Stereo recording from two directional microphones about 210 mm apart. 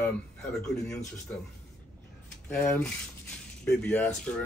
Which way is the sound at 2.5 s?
5° left (ahead or behind).